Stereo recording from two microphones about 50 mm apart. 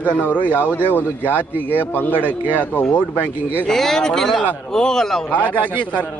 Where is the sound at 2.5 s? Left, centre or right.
Left.